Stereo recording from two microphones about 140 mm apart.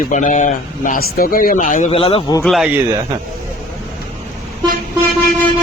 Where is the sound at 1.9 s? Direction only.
40° left (ahead or behind).